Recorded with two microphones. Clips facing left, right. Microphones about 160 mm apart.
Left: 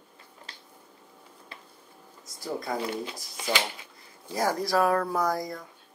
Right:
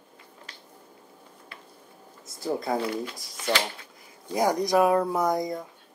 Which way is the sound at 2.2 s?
25° right (ahead or behind).